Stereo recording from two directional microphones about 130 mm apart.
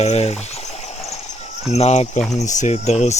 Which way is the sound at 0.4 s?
60° left (ahead or behind).